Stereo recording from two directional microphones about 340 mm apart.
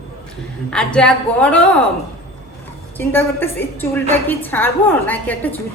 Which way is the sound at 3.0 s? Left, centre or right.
Centre.